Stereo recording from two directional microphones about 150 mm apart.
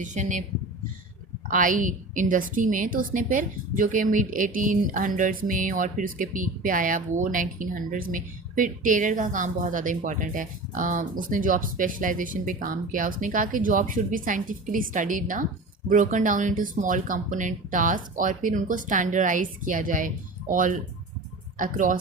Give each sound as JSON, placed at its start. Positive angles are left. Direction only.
{"t": 0.0, "sound": "a woman's voice", "side_deg": -55}
{"t": 1.5, "sound": "a woman's voice", "side_deg": -65}